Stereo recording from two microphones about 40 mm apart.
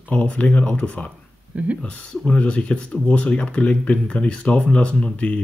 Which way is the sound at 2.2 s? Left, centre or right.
Left.